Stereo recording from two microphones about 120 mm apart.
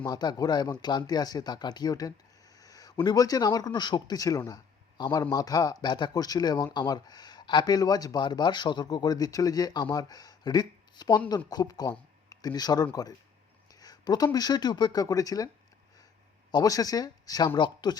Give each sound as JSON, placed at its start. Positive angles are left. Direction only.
{"t": 0.0, "sound": "speech", "side_deg": 35}
{"t": 13.7, "sound": "a sound", "side_deg": 35}
{"t": 14.3, "sound": "speech", "side_deg": 35}
{"t": 16.5, "sound": "speech", "side_deg": 30}